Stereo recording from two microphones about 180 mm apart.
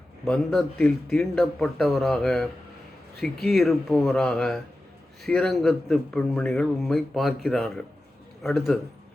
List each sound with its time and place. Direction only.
0.3 s speech: 5° left (ahead or behind)